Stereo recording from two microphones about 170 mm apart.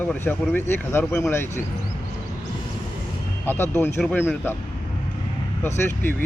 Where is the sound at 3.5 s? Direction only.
15° left (ahead or behind).